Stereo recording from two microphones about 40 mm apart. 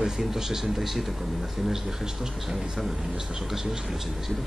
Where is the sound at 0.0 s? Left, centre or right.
Centre.